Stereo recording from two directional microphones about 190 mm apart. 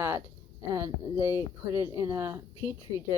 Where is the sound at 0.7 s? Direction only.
15° right (ahead or behind).